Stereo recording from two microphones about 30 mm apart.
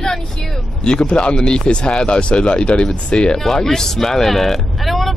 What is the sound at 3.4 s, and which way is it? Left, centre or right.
Speech, centre.